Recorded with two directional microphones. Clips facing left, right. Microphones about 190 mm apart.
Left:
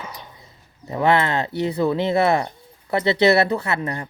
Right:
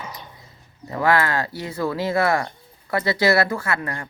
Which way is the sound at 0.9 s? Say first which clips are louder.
Left 1 dB; 20° left (ahead or behind).